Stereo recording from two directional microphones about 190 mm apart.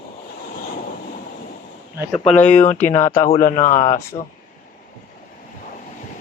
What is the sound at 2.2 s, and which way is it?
Speech, 5° left (ahead or behind).